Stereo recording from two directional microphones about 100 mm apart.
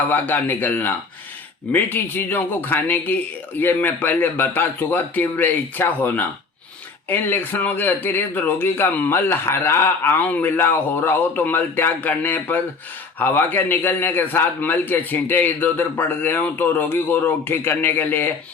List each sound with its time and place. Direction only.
0.1 s speech: 20° left (ahead or behind)